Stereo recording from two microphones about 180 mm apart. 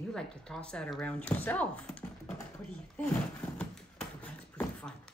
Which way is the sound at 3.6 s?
5° left (ahead or behind).